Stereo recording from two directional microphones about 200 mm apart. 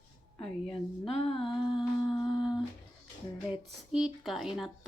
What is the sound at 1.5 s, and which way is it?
Music, 20° left (ahead or behind).